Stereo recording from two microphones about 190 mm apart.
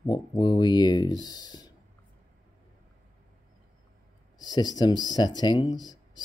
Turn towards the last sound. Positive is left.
turn(degrees=20)  # may be behind; listen again after turning